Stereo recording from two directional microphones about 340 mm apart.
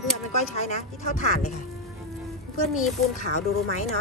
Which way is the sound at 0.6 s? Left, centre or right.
Centre.